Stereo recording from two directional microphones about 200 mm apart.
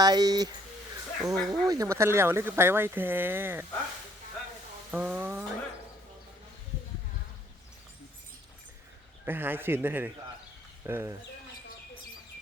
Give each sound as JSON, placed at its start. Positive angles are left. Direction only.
{"t": 0.0, "sound": "speech", "side_deg": -20}
{"t": 4.9, "sound": "speech", "side_deg": -10}
{"t": 9.2, "sound": "speech", "side_deg": -10}